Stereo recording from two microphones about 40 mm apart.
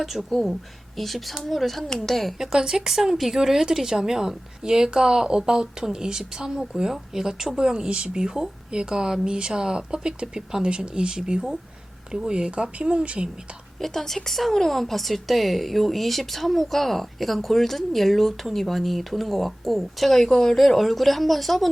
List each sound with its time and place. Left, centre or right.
0.0 s speech: centre
2.4 s a woman's voice: centre
12.3 s speech: right
13.7 s a woman's voice: centre